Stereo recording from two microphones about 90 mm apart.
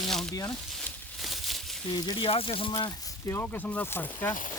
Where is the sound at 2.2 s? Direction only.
85° left; by 2.9 s 65° left (ahead or behind).